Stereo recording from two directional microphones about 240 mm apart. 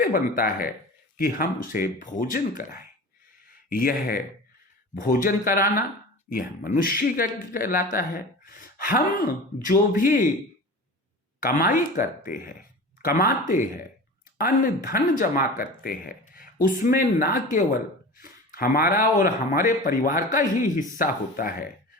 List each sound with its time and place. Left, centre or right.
0.0 s speech: left
11.3 s speech: left